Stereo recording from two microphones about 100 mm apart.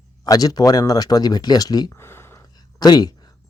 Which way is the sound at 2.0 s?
25° left (ahead or behind).